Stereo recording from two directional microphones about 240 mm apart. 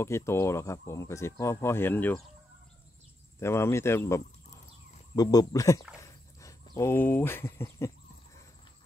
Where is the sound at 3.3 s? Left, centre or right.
Centre.